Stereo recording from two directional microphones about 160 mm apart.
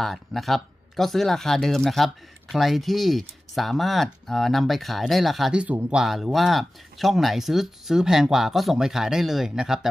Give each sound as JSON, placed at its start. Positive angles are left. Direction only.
{"t": 0.0, "sound": "speech", "side_deg": 0}